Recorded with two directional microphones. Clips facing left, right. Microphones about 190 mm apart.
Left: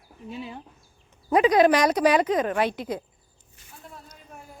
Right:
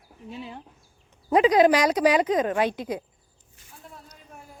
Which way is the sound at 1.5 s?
15° right (ahead or behind).